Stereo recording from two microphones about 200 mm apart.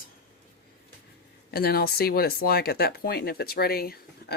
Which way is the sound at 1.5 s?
50° left (ahead or behind).